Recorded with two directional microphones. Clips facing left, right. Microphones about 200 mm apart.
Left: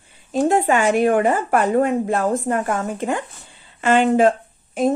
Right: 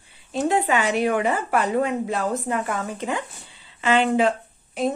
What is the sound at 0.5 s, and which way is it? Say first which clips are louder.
A woman's voice: left 4 dB; 45° left (ahead or behind).